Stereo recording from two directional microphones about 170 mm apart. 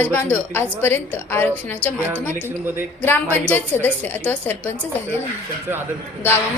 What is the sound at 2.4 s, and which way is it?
Speech, 15° right (ahead or behind).